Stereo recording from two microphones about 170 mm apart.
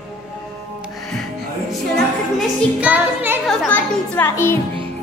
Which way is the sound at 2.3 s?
10° right (ahead or behind).